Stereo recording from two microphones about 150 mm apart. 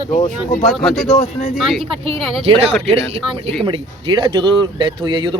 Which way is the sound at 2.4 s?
40° right (ahead or behind).